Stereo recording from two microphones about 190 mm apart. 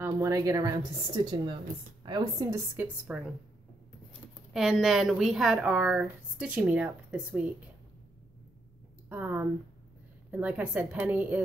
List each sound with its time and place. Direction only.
0.0 s a woman's voice: 15° right (ahead or behind)
4.6 s a woman's voice: centre (ahead or behind)
9.1 s a woman's voice: 10° right (ahead or behind)